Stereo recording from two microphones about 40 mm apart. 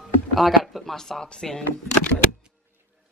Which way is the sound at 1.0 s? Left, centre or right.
Centre.